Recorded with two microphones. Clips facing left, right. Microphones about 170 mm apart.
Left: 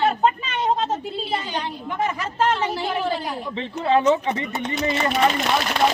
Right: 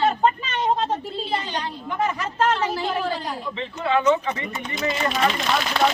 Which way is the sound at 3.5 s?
35° left (ahead or behind).